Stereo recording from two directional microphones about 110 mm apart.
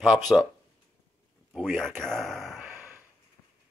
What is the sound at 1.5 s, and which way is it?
Speech, centre (ahead or behind).